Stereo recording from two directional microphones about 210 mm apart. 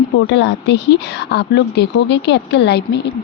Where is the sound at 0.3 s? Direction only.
60° left (ahead or behind).